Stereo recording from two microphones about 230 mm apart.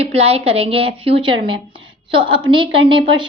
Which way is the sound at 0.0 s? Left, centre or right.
Right.